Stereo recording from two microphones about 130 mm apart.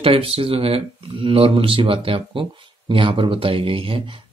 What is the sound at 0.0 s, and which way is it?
Speech, 45° right (ahead or behind).